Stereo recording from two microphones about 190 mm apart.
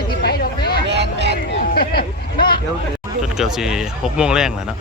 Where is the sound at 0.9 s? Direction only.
65° right (ahead or behind).